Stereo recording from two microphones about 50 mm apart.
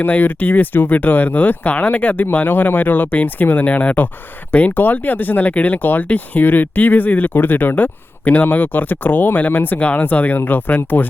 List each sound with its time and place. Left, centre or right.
0.0 s speech: left